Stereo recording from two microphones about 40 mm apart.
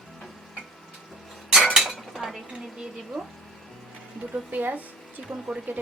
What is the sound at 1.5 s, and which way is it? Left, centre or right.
Cutlery, centre.